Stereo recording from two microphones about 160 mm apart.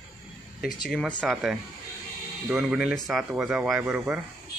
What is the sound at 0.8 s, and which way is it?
Speech, centre (ahead or behind).